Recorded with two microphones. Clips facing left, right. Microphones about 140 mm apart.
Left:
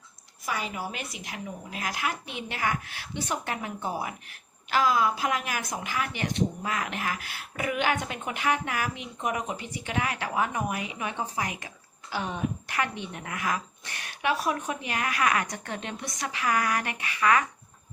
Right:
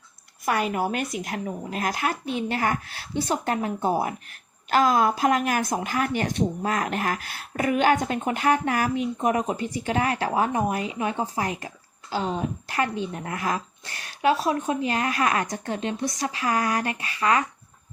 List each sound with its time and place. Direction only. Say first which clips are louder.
0.4 s speech: right 8 dB; 55° right (ahead or behind); by 17.4 s 25° right (ahead or behind)